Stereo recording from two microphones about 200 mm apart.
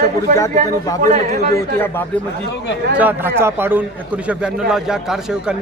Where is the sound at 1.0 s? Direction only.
40° right (ahead or behind).